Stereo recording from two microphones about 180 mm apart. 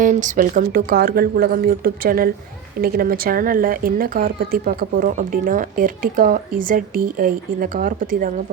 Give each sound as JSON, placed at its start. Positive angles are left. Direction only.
{"t": 0.0, "sound": "a woman's voice", "side_deg": -45}